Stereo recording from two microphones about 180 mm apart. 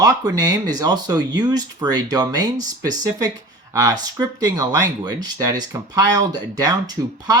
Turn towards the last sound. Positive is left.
turn(degrees=-20)  # may be behind; listen again after turning